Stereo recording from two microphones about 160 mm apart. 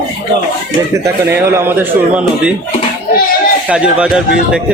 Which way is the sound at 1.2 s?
15° right (ahead or behind).